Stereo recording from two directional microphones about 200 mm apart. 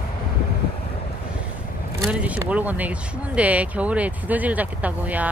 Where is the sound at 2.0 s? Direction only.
5° right (ahead or behind).